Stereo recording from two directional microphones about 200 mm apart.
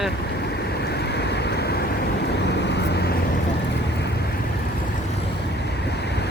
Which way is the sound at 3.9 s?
60° left (ahead or behind).